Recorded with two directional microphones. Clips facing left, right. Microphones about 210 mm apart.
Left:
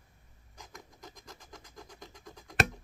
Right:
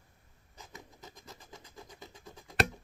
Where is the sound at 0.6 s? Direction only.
5° right (ahead or behind).